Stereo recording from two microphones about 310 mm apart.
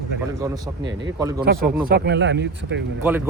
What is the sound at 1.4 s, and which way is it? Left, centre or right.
Speech, right.